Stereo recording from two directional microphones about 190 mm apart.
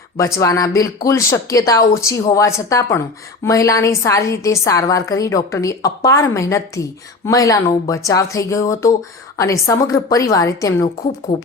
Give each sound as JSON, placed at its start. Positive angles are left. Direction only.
{"t": 0.2, "sound": "a woman's voice", "side_deg": 15}